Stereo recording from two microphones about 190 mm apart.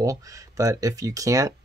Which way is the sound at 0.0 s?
20° right (ahead or behind).